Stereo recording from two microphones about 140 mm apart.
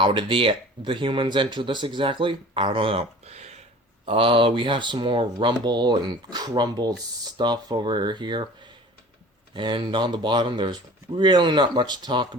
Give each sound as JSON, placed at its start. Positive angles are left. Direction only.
{"t": 0.0, "sound": "speech", "side_deg": -40}
{"t": 4.0, "sound": "speech", "side_deg": -40}
{"t": 9.6, "sound": "speech", "side_deg": -35}